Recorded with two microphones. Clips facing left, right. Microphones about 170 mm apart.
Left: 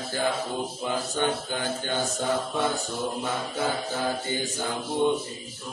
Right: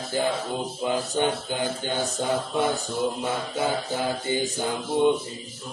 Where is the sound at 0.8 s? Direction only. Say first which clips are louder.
Right 3 dB; 15° right (ahead or behind).